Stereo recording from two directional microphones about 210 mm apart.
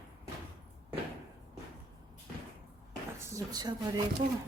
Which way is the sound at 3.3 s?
15° right (ahead or behind).